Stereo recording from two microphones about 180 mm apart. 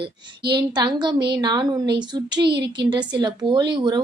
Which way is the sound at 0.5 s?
25° right (ahead or behind).